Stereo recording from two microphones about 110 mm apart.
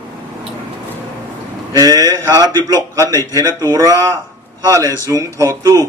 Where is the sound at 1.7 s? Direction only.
35° right (ahead or behind).